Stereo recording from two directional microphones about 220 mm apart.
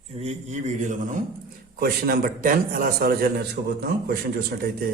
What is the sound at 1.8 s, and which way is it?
A man's voice, 40° right (ahead or behind).